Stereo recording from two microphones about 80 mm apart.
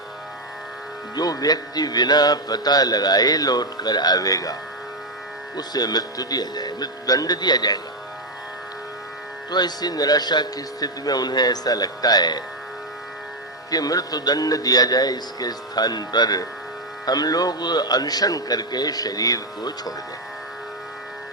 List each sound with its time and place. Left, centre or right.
1.1 s speech: left
5.5 s speech: left
9.5 s speech: left
13.7 s a man's voice: left